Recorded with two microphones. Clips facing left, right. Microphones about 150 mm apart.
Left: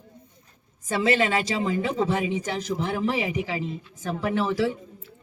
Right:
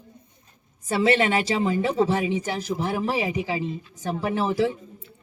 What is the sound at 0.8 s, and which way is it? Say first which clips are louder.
A woman's voice: right 2 dB; 30° right (ahead or behind).